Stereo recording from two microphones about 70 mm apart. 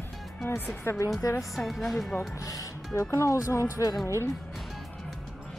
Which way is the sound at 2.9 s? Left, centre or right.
Left.